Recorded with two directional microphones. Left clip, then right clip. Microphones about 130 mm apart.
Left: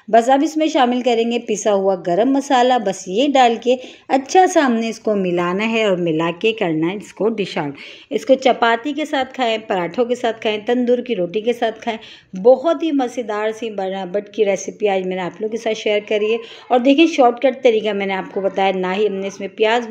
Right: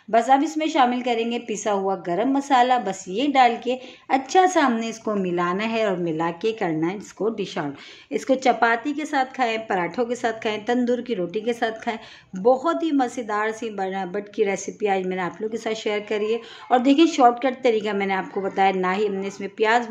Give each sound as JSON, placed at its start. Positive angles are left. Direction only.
{"t": 0.1, "sound": "a woman's voice", "side_deg": 20}
{"t": 5.3, "sound": "a woman's voice", "side_deg": 25}
{"t": 7.2, "sound": "speech", "side_deg": 40}
{"t": 8.1, "sound": "a woman's voice", "side_deg": 10}